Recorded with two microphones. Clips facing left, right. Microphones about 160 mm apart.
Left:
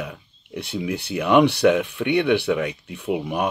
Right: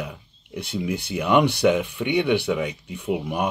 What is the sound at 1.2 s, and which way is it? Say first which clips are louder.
Speech: left 3 dB; 55° left (ahead or behind).